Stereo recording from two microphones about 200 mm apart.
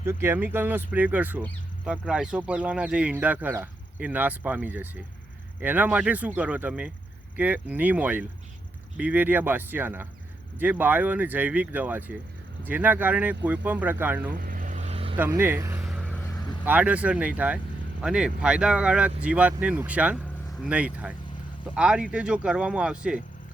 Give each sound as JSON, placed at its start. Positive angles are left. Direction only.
{"t": 0.0, "sound": "speech", "side_deg": -10}
{"t": 14.3, "sound": "vehicle", "side_deg": -45}
{"t": 15.2, "sound": "speech", "side_deg": -10}